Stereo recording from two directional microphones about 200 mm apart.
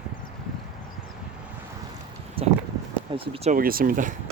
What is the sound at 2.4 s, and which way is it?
Clip-clop, 30° right (ahead or behind).